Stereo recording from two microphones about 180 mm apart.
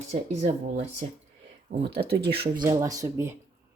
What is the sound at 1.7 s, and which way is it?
Speech, 50° right (ahead or behind).